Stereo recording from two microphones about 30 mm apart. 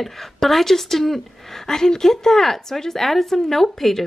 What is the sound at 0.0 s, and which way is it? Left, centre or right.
A woman's voice, centre.